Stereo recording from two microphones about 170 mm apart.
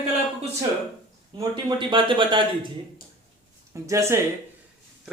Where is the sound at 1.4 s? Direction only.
30° right (ahead or behind).